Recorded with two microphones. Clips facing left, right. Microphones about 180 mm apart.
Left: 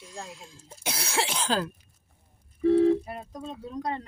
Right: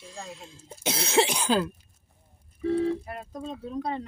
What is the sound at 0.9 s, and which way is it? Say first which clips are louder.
Cough: right 6 dB; 20° right (ahead or behind).